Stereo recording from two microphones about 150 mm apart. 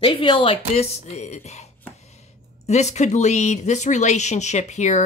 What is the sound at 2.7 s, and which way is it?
Speech, 50° left (ahead or behind).